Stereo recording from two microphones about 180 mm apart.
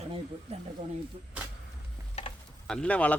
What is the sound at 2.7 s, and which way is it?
Speech, 5° left (ahead or behind).